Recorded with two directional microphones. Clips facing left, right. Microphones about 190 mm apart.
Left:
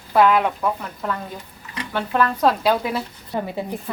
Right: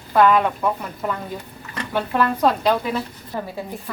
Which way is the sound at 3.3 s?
20° left (ahead or behind).